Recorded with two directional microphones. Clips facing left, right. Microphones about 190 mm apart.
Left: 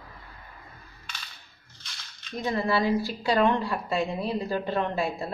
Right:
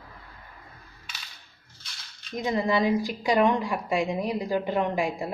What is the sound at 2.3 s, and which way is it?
A woman's voice, 15° right (ahead or behind).